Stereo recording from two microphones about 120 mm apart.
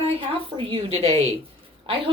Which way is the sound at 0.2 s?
50° right (ahead or behind).